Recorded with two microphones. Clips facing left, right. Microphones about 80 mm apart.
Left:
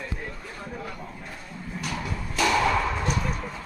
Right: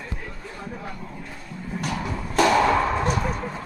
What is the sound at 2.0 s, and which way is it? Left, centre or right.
Music, right.